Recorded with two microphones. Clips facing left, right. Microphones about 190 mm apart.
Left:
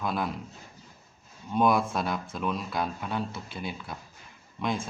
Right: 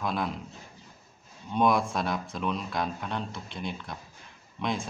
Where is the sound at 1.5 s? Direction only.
5° left (ahead or behind).